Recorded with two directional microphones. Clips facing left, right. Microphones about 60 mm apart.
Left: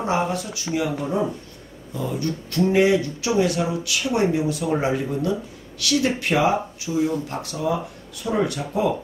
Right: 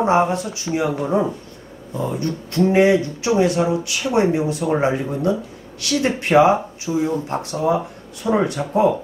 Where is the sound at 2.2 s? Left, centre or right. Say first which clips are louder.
Right 3 dB; right.